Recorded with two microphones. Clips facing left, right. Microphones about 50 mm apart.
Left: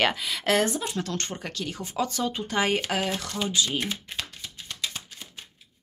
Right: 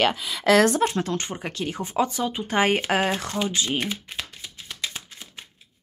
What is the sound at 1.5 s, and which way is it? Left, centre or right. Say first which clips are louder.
Speech: right 4 dB; right.